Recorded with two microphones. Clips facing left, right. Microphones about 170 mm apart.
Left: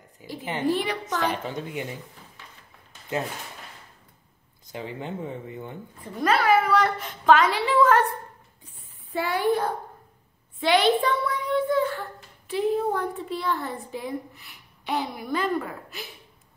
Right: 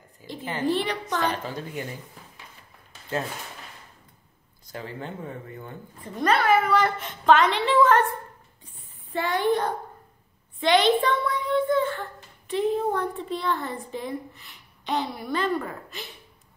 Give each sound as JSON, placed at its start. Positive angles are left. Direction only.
{"t": 0.2, "sound": "a sound", "side_deg": 20}
{"t": 0.7, "sound": "speech", "side_deg": 10}
{"t": 4.7, "sound": "speech", "side_deg": 15}
{"t": 6.1, "sound": "a woman's voice", "side_deg": 5}
{"t": 9.1, "sound": "speech", "side_deg": 10}
{"t": 10.6, "sound": "child singing", "side_deg": 5}
{"t": 12.4, "sound": "a woman's voice", "side_deg": 5}